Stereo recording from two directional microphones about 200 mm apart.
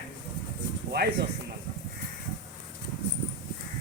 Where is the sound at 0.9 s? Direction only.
55° right (ahead or behind).